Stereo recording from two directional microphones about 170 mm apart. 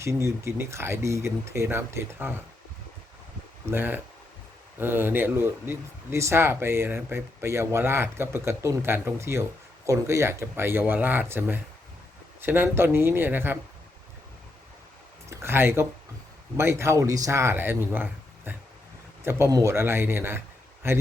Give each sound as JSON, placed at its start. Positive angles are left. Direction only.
{"t": 0.0, "sound": "speech", "side_deg": -15}
{"t": 3.7, "sound": "speech", "side_deg": -10}
{"t": 15.3, "sound": "speech", "side_deg": -15}